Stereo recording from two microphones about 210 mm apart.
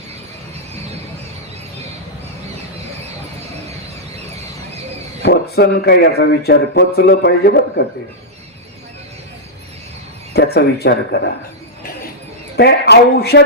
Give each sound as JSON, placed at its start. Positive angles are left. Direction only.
{"t": 5.2, "sound": "speech", "side_deg": 50}
{"t": 10.3, "sound": "speech", "side_deg": 50}
{"t": 12.5, "sound": "speech", "side_deg": 50}